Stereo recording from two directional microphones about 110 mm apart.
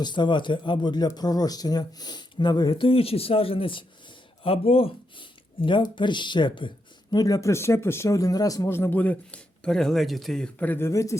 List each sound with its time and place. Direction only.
0.0 s speech: 45° left (ahead or behind)
2.8 s speech: 60° left (ahead or behind); by 11.2 s 30° left (ahead or behind)